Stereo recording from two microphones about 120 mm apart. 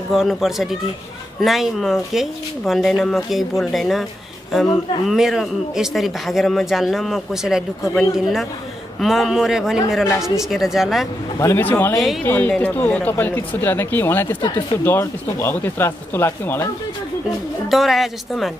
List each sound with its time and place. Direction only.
0.1 s speech: centre (ahead or behind)
11.3 s speech: 20° left (ahead or behind)
17.6 s speech: centre (ahead or behind)